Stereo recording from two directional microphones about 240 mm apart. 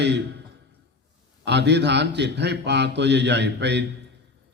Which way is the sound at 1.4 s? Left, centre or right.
Right.